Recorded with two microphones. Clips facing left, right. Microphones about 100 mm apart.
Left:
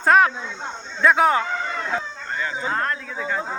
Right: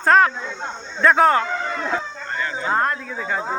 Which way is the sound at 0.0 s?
10° left (ahead or behind).